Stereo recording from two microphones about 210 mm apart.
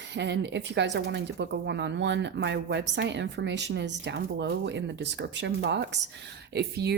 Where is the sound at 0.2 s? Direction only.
55° right (ahead or behind).